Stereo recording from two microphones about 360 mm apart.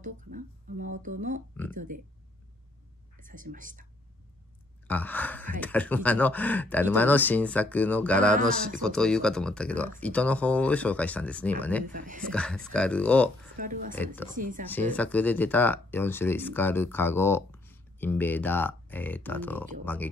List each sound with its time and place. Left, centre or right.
0.0 s speech: right
3.2 s speech: right
4.8 s speech: centre
11.9 s speech: right
12.3 s speech: centre
13.6 s speech: right
13.9 s speech: centre
14.3 s speech: right
14.7 s speech: centre